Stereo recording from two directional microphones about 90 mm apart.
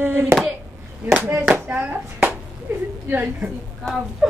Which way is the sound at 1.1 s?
20° right (ahead or behind).